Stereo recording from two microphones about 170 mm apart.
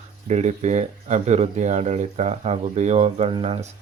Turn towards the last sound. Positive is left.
turn(degrees=-35)  # may be behind; listen again after turning